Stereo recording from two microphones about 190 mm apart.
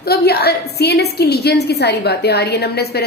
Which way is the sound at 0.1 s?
55° left (ahead or behind).